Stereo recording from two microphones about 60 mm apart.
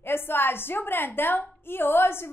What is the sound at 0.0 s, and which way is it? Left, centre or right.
A woman's voice, left.